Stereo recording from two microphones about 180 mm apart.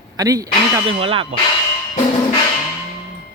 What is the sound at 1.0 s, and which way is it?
Speech, 30° right (ahead or behind).